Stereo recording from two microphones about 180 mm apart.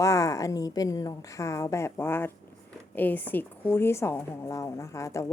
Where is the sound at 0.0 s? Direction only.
15° left (ahead or behind).